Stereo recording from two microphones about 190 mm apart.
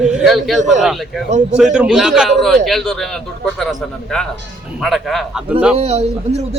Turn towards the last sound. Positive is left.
turn(degrees=-35)  # may be behind; listen again after turning